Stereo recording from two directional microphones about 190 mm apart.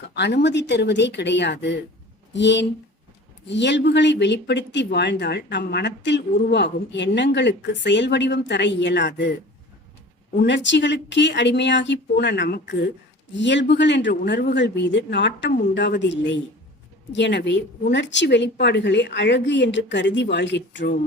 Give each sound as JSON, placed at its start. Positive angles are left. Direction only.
{"t": 0.1, "sound": "speech", "side_deg": 60}
{"t": 10.4, "sound": "speech", "side_deg": 70}
{"t": 13.3, "sound": "speech", "side_deg": 70}